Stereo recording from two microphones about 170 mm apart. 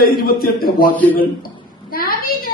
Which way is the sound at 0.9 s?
10° left (ahead or behind).